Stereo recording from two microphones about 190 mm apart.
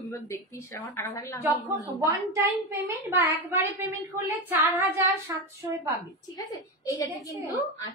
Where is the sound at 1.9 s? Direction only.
15° right (ahead or behind).